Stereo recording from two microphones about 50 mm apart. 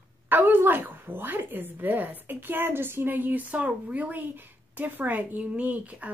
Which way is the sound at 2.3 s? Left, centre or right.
Right.